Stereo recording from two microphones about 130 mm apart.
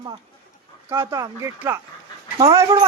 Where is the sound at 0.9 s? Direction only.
20° right (ahead or behind).